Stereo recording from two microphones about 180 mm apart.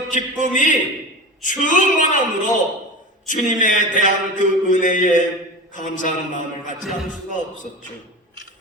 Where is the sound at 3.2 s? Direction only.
45° left (ahead or behind).